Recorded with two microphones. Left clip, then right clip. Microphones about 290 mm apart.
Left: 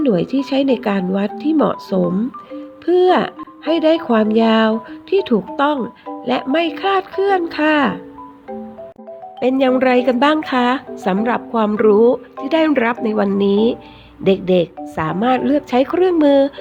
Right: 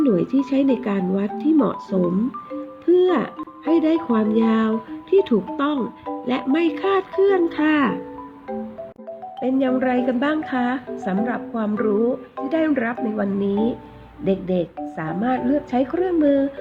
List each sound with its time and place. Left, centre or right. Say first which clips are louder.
0.0 s speech: left 2 dB; left
6.2 s speech: left 4 dB; left
9.4 s a woman's voice: left 7 dB; left